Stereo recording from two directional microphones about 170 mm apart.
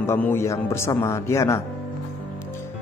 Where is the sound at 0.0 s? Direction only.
15° left (ahead or behind).